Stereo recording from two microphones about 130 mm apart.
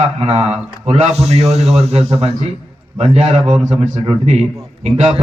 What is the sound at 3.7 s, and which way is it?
A man's voice, 60° right (ahead or behind).